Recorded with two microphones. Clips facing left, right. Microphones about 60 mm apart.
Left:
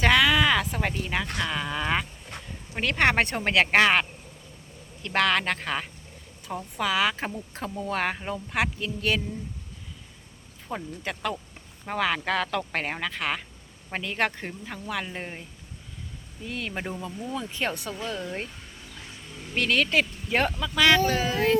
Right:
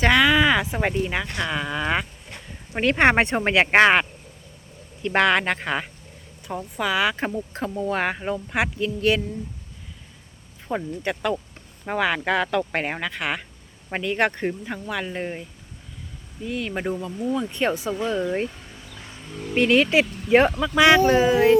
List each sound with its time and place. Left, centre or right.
0.0 s speech: centre
2.7 s speech: right
5.0 s speech: centre
10.7 s speech: centre
19.5 s speech: centre